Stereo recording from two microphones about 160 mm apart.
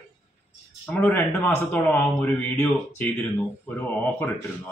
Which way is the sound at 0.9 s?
10° left (ahead or behind).